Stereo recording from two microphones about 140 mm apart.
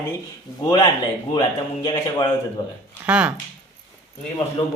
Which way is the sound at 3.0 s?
10° right (ahead or behind).